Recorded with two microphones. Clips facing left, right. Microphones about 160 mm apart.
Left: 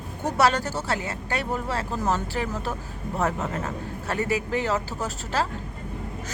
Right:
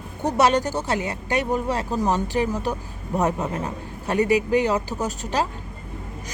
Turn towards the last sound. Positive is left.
turn(degrees=-20)  # may be behind; listen again after turning